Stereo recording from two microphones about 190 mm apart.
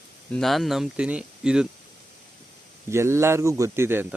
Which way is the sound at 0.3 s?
Centre (ahead or behind).